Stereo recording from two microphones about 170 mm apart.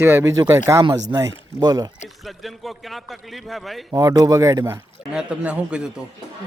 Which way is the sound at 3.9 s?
20° right (ahead or behind).